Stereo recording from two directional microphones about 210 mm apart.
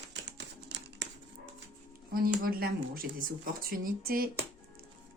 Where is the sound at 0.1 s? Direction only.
55° right (ahead or behind).